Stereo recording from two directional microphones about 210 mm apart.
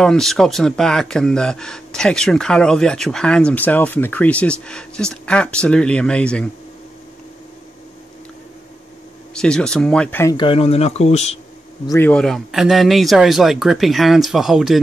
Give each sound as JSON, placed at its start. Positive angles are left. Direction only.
{"t": 0.0, "sound": "speech", "side_deg": 0}
{"t": 9.3, "sound": "speech", "side_deg": 5}
{"t": 10.3, "sound": "speech", "side_deg": 25}
{"t": 11.9, "sound": "speech", "side_deg": 10}